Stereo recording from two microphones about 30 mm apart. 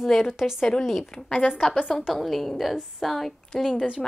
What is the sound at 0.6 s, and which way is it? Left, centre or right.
Speech, left.